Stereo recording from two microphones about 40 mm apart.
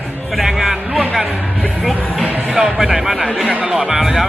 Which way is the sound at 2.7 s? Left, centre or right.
Centre.